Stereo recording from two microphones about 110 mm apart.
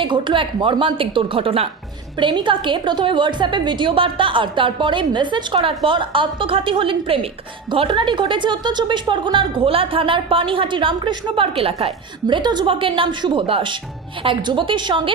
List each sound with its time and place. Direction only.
0.0 s a woman's voice: 50° right (ahead or behind)
2.1 s a woman's voice: 45° right (ahead or behind)
12.4 s a woman's voice: 40° right (ahead or behind)